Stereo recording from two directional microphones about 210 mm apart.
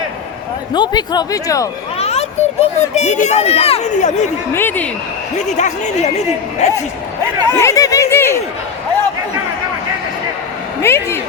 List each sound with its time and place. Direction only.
0.7 s a man's voice: 20° left (ahead or behind)
2.0 s a child's voice: 30° left (ahead or behind)
4.5 s speech: 10° left (ahead or behind)
5.5 s a child's voice: 35° left (ahead or behind)
7.5 s snicker: 15° left (ahead or behind)
10.8 s speech: 10° left (ahead or behind)